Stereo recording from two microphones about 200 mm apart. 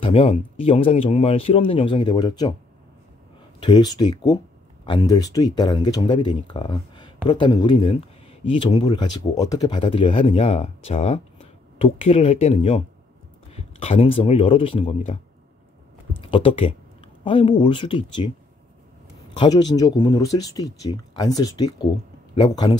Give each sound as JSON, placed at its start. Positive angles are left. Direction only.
{"t": 0.0, "sound": "speech", "side_deg": 30}
{"t": 3.5, "sound": "speech", "side_deg": 25}
{"t": 16.2, "sound": "speech", "side_deg": 25}
{"t": 19.3, "sound": "speech", "side_deg": 20}